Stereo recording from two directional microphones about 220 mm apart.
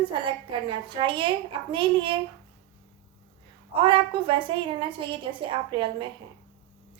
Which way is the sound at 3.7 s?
20° right (ahead or behind).